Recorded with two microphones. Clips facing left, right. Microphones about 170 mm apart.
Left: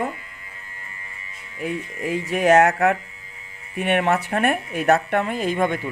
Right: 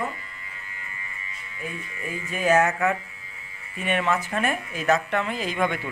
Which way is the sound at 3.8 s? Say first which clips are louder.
Left 5 dB; 65° left (ahead or behind).